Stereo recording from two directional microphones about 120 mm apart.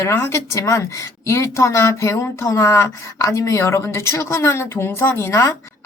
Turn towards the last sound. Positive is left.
turn(degrees=25)  # may be behind; listen again after turning